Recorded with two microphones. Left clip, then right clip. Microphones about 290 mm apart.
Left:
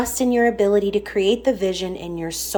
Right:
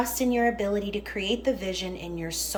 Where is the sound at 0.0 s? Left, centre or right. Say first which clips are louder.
Left 6 dB; centre.